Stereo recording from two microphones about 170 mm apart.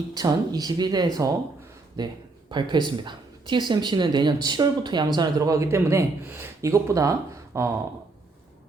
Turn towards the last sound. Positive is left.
turn(degrees=-20)  # may be behind; listen again after turning